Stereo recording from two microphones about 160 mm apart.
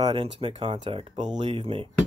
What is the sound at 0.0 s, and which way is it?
Speech, 35° right (ahead or behind).